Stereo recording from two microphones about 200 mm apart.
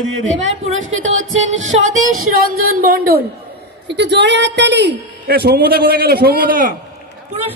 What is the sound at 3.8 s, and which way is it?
A woman's voice, 60° right (ahead or behind).